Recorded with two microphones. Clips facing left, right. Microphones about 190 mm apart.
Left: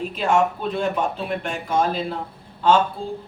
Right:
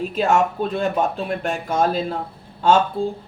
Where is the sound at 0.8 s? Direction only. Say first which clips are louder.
Right 1 dB; 45° right (ahead or behind).